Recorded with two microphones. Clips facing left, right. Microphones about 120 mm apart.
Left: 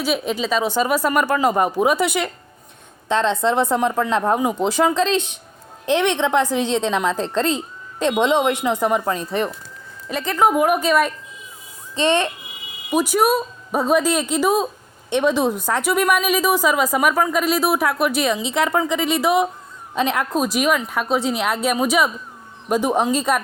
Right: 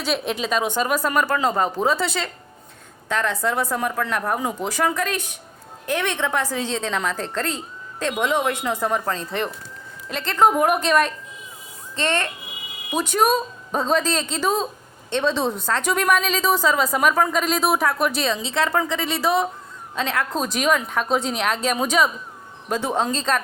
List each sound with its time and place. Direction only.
0.0 s a woman's voice: 5° left (ahead or behind)
10.3 s a woman's voice: 5° left (ahead or behind)
11.9 s a woman's voice: 15° left (ahead or behind)